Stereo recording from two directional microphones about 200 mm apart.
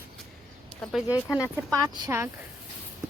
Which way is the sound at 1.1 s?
15° left (ahead or behind).